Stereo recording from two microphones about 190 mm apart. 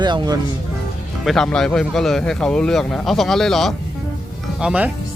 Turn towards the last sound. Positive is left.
turn(degrees=-5)  # may be behind; listen again after turning